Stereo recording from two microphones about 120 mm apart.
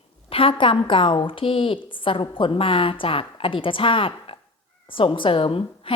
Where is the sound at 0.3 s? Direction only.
50° left (ahead or behind).